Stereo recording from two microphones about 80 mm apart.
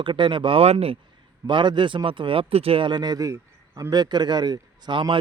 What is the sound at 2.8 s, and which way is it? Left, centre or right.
A man's voice, right.